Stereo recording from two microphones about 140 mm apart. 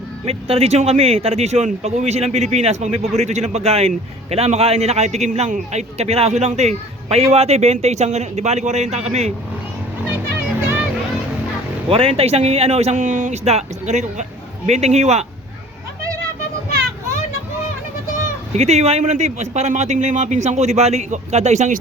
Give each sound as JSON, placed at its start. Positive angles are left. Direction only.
{"t": 0.3, "sound": "a man's voice", "side_deg": -45}
{"t": 11.9, "sound": "a man's voice", "side_deg": -45}
{"t": 18.5, "sound": "a man's voice", "side_deg": -50}